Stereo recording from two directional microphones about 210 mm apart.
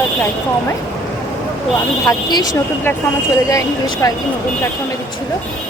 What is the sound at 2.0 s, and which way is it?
Speech, 15° left (ahead or behind).